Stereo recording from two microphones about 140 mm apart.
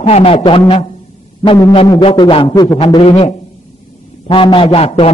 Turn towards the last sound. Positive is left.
turn(degrees=40)  # may be behind; listen again after turning